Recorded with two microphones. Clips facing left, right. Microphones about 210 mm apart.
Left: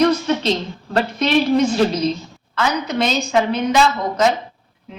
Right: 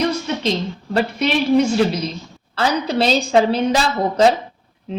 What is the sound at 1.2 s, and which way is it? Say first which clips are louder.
Speech: left 1 dB; 10° right (ahead or behind).